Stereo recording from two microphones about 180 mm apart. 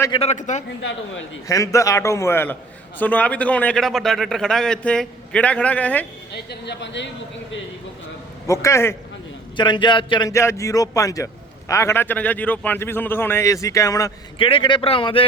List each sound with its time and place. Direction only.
0.1 s a man's voice: 35° left (ahead or behind)
0.8 s speech: 90° left
1.5 s a man's voice: 15° left (ahead or behind)
6.3 s a woman's voice: 70° left (ahead or behind)
8.6 s a man's voice: 15° left (ahead or behind)
9.6 s a man's voice: 25° left (ahead or behind)
14.3 s a man's voice: 30° left (ahead or behind)